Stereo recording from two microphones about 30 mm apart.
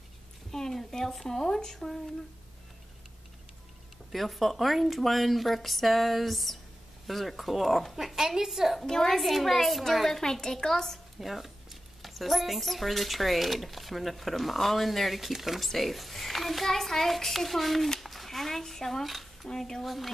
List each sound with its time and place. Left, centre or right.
0.5 s a woman's voice: centre
4.1 s a woman's voice: centre
8.8 s a child's voice: centre
9.2 s speech: centre
10.0 s a child's voice: centre
11.1 s speech: centre
15.6 s a child's voice: centre
19.0 s a sound: centre
19.5 s a child's voice: centre
19.8 s speech: centre